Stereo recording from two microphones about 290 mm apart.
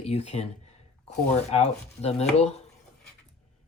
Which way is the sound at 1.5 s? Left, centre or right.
Left.